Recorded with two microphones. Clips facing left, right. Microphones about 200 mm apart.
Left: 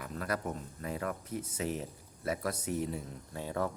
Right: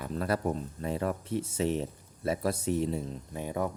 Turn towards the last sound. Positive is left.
turn(degrees=-15)  # may be behind; listen again after turning